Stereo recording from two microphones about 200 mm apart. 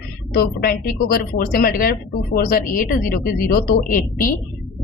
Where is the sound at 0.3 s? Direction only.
50° left (ahead or behind).